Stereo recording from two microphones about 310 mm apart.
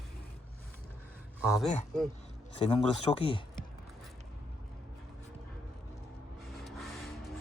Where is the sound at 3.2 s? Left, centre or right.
Centre.